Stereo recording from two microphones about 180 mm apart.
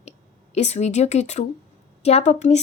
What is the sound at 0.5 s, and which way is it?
A woman's voice, 40° left (ahead or behind).